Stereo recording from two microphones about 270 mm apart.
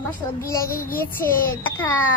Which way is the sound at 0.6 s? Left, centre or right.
Left.